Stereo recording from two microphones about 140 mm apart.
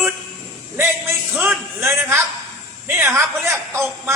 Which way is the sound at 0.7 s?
15° right (ahead or behind).